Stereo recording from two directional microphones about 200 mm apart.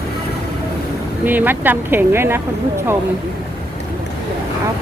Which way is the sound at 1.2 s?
10° right (ahead or behind).